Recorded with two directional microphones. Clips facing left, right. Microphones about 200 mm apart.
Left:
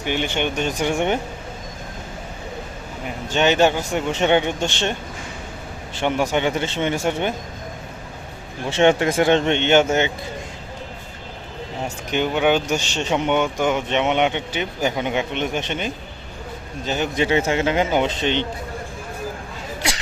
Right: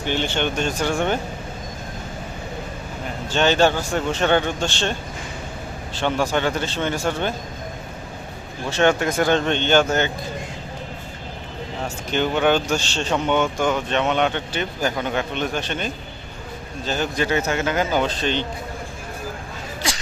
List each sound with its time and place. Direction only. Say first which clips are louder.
0.0 s speech: even; 15° left (ahead or behind)
3.2 s speech: left 1 dB; 15° left (ahead or behind)
6.0 s speech: left 1 dB; 20° left (ahead or behind)
8.7 s speech: left 2 dB; 25° left (ahead or behind)
12.1 s speech: even; 10° left (ahead or behind)